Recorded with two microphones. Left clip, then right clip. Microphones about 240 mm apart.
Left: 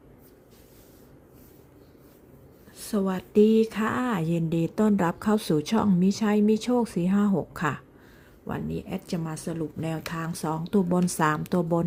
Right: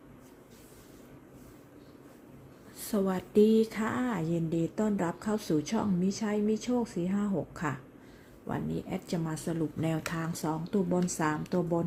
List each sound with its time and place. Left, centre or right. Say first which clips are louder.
2.7 s speech: left 2 dB; centre